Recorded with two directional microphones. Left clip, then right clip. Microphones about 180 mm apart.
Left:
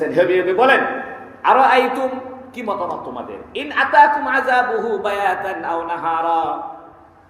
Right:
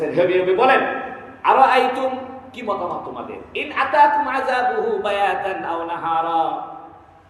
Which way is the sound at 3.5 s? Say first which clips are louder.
Left 4 dB; 25° left (ahead or behind).